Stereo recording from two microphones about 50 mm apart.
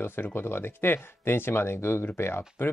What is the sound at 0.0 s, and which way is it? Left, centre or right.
Speech, left.